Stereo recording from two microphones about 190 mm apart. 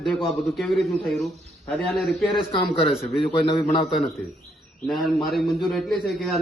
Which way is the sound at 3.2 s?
25° left (ahead or behind).